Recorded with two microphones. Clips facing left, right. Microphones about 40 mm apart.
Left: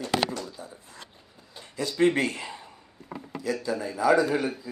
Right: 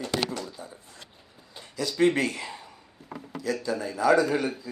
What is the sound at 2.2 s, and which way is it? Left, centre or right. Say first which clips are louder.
Speech: even; left.